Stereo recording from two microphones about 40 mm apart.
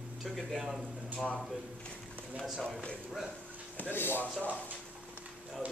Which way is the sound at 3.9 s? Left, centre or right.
Left.